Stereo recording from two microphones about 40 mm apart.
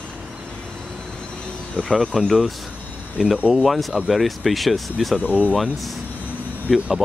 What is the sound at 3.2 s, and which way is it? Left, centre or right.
Speech, centre.